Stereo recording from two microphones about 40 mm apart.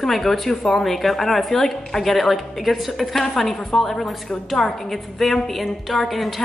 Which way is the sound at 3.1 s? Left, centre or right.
Centre.